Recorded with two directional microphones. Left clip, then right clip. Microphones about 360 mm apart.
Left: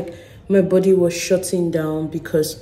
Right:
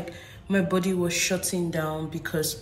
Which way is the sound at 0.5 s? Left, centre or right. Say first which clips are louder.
Left 11 dB; centre.